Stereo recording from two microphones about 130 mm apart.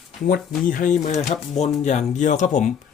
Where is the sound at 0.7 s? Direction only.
80° left.